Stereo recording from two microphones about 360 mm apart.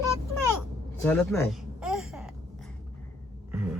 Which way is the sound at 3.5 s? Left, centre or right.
Centre.